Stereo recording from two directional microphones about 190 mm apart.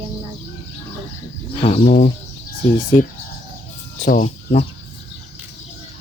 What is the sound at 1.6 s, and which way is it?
Speech, 30° left (ahead or behind).